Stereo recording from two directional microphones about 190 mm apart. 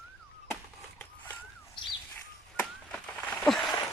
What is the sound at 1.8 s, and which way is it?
Bird, 25° left (ahead or behind).